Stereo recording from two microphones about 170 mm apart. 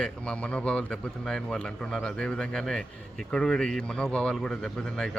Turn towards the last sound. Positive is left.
turn(degrees=5)  # may be behind; listen again after turning